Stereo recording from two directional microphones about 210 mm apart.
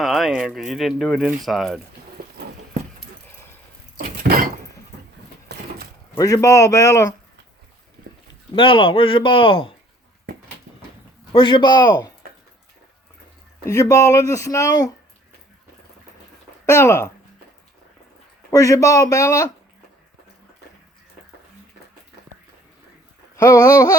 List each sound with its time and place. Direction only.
0.0 s speech: centre (ahead or behind)
2.2 s clip-clop: 45° right (ahead or behind)
3.9 s a sound: 45° right (ahead or behind)
5.5 s a sound: 55° right (ahead or behind)
6.1 s speech: 15° left (ahead or behind)
8.5 s speech: 25° left (ahead or behind)
11.3 s speech: 20° left (ahead or behind)
13.7 s speech: 15° left (ahead or behind)
16.6 s speech: 15° left (ahead or behind)
18.5 s speech: 15° left (ahead or behind)
23.3 s speech: 15° left (ahead or behind)